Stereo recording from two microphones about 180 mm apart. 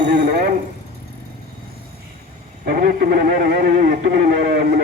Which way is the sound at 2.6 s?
60° right (ahead or behind).